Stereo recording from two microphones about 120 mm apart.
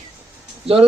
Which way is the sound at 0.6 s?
55° right (ahead or behind).